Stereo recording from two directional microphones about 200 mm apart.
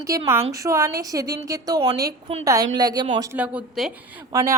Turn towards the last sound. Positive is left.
turn(degrees=-20)  # may be behind; listen again after turning